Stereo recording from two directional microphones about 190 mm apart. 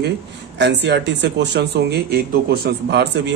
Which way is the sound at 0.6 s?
65° right (ahead or behind).